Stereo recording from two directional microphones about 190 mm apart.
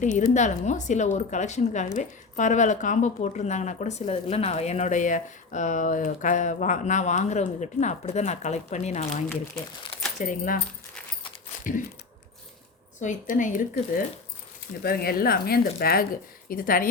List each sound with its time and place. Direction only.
0.0 s speech: 40° left (ahead or behind)
13.0 s speech: 40° left (ahead or behind)